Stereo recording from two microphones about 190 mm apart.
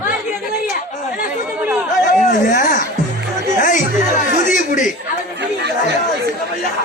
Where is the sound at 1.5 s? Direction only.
10° right (ahead or behind).